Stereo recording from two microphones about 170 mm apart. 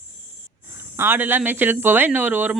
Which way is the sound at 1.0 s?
10° right (ahead or behind).